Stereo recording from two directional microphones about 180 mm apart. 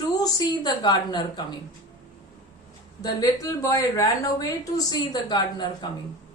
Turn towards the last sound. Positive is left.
turn(degrees=20)  # may be behind; listen again after turning